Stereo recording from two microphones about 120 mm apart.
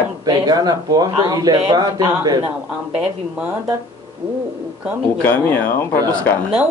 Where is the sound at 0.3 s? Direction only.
35° right (ahead or behind).